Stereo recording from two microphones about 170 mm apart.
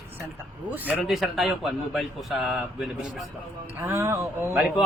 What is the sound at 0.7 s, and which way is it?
Speech, 10° right (ahead or behind).